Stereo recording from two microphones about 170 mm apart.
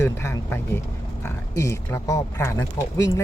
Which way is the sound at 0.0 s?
15° left (ahead or behind).